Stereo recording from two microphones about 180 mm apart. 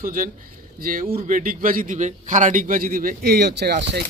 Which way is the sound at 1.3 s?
50° right (ahead or behind).